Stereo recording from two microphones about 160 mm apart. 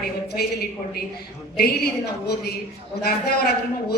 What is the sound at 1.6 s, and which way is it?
Speech, 85° left.